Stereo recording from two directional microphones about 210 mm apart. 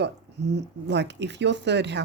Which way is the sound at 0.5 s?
55° right (ahead or behind).